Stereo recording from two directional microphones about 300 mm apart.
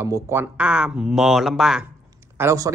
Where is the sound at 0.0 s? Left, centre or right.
Centre.